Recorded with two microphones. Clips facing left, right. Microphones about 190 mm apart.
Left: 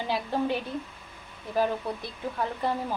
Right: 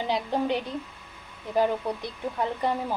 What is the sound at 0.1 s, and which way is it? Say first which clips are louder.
Speech: right 1 dB; 20° right (ahead or behind).